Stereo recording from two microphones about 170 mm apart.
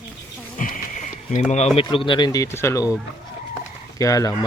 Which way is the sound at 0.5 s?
50° left (ahead or behind).